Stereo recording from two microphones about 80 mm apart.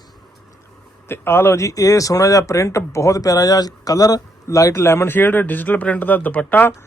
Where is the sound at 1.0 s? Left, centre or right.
Left.